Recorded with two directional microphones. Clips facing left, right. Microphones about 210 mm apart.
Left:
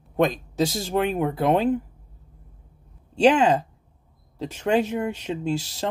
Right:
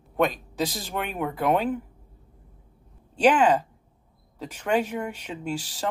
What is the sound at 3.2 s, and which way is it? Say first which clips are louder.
Speech: left 2 dB; 25° left (ahead or behind).